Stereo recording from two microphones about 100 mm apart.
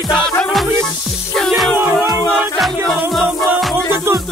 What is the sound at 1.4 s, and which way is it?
Music, centre (ahead or behind).